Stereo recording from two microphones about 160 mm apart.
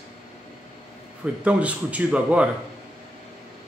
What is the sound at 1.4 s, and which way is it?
A man's voice, 10° right (ahead or behind).